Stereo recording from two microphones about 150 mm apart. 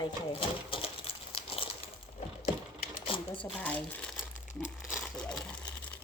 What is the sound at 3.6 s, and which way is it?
Crumpling, 10° left (ahead or behind).